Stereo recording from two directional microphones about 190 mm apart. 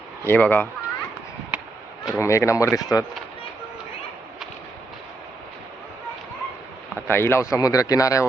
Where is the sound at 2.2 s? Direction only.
15° left (ahead or behind).